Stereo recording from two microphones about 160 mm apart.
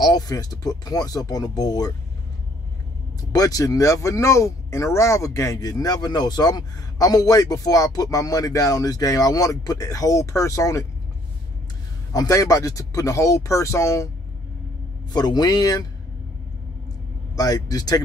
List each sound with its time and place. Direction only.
0.0 s speech: 25° left (ahead or behind)
3.2 s speech: 20° left (ahead or behind)
12.1 s speech: 20° left (ahead or behind)
15.1 s speech: 25° left (ahead or behind)
17.4 s speech: 25° left (ahead or behind)